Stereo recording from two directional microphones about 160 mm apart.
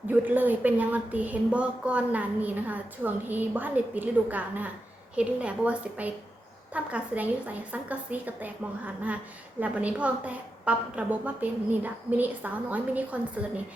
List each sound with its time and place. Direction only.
0.1 s a woman's voice: 10° right (ahead or behind)